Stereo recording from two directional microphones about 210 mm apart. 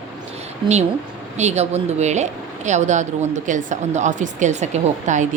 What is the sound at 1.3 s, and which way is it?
A woman's voice, 30° right (ahead or behind).